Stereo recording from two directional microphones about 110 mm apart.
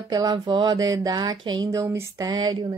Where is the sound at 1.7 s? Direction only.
30° right (ahead or behind).